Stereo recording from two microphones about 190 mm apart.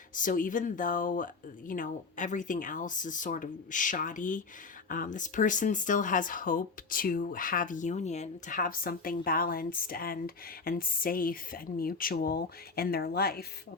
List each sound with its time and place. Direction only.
0.1 s speech: 45° left (ahead or behind)